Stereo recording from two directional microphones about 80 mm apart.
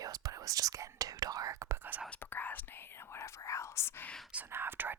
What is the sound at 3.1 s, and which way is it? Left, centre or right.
Speech, left.